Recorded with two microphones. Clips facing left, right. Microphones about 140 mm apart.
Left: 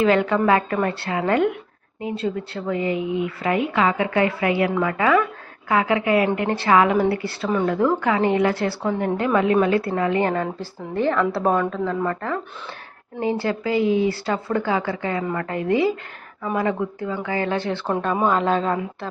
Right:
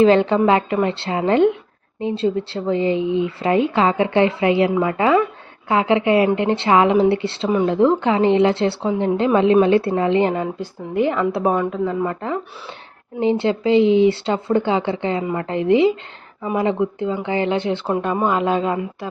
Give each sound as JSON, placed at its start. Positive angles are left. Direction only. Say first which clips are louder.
{"t": 0.0, "sound": "a woman's voice", "louder": "right 4 dB", "side_deg": -30}
{"t": 17.8, "sound": "a man's voice", "louder": "left 2 dB", "side_deg": -5}